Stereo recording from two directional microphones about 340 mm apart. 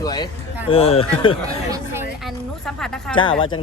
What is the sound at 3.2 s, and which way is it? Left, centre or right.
Speech, centre.